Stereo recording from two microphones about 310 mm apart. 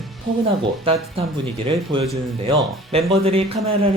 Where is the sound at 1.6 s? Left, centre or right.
Centre.